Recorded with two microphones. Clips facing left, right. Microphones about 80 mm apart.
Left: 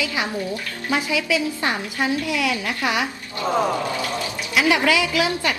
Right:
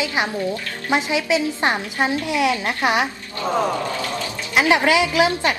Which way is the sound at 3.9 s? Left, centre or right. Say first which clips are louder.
Even; centre.